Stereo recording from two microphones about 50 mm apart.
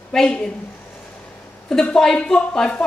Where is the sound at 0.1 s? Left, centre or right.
Centre.